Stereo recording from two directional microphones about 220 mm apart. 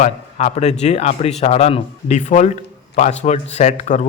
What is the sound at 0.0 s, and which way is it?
Speech, 30° left (ahead or behind).